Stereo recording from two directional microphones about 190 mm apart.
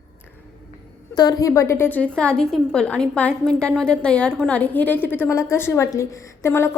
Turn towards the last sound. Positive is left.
turn(degrees=15)  # may be behind; listen again after turning